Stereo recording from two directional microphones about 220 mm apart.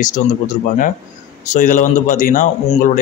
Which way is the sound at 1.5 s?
35° left (ahead or behind).